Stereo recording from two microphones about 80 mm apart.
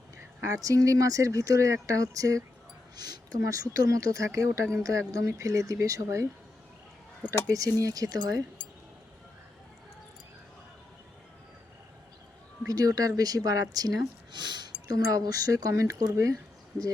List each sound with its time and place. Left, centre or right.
0.4 s speech: right
7.5 s speech: right
12.6 s speech: right